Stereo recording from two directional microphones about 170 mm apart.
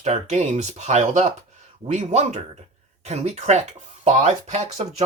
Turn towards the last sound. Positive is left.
turn(degrees=-40)  # may be behind; listen again after turning